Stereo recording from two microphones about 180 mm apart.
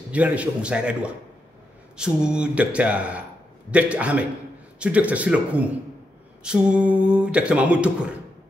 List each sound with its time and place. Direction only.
0.1 s speech: 10° right (ahead or behind)